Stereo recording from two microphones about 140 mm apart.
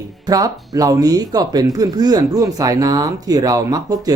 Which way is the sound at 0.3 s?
25° right (ahead or behind).